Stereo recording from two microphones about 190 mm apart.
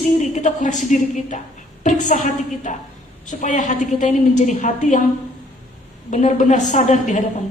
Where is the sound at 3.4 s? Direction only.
40° left (ahead or behind).